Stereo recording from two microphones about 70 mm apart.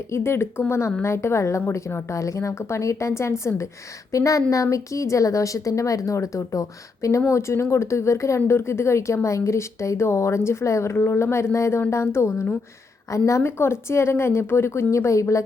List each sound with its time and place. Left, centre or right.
0.1 s a woman's voice: left